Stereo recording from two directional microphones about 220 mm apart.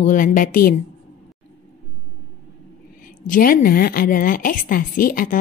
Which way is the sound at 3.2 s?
40° left (ahead or behind).